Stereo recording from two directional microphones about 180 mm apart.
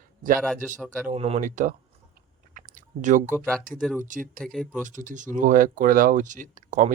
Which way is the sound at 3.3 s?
5° left (ahead or behind).